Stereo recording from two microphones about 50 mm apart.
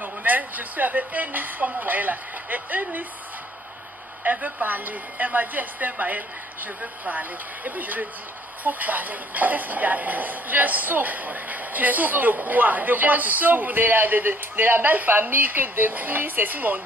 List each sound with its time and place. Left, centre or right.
0.0 s speech: right
4.2 s speech: right